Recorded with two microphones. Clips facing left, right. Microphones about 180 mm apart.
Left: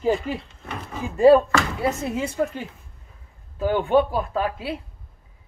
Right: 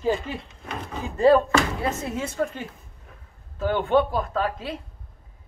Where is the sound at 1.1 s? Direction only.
15° left (ahead or behind).